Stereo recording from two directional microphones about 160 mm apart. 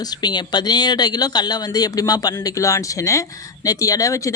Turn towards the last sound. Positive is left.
turn(degrees=20)  # may be behind; listen again after turning